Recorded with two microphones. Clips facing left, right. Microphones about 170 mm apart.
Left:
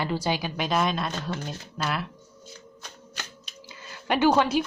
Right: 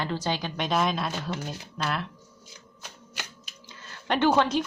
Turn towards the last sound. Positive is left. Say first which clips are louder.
# left 1 dB
turn(degrees=10)  # may be behind; listen again after turning